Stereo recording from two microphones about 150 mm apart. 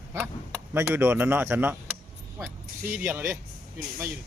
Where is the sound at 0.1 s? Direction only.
15° right (ahead or behind).